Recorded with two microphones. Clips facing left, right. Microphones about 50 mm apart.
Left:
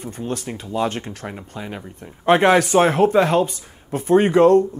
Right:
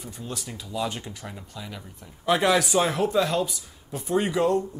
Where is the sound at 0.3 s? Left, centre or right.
Left.